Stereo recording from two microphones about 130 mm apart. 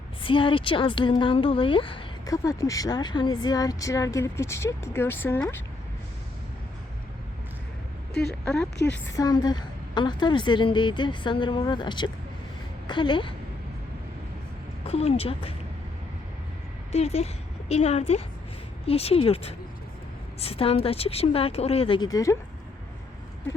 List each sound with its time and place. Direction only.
0.2 s a woman's voice: 40° left (ahead or behind)
2.2 s speech: 25° left (ahead or behind)
8.8 s a woman's voice: 15° left (ahead or behind)
9.1 s a woman's voice: 30° left (ahead or behind)
14.8 s a woman's voice: 50° left (ahead or behind)
16.9 s a woman's voice: 55° left (ahead or behind)
22.1 s speech: 25° left (ahead or behind)